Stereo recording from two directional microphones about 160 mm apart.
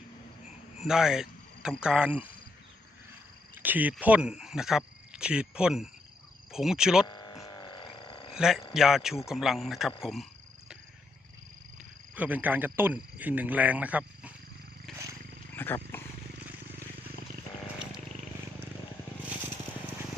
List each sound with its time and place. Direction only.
0.8 s speech: 5° right (ahead or behind)
3.5 s cricket: 10° right (ahead or behind)
4.0 s speech: 10° right (ahead or behind)
7.1 s a sound: 25° left (ahead or behind)
8.3 s speech: 5° right (ahead or behind)
12.1 s speech: 10° right (ahead or behind)
14.9 s wild animals: centre (ahead or behind)
15.5 s wild animals: 15° left (ahead or behind)